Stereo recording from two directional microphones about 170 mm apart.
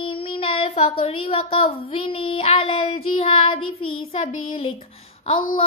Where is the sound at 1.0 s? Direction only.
35° left (ahead or behind).